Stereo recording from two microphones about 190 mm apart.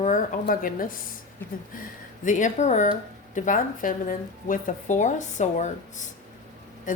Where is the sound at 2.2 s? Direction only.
40° left (ahead or behind).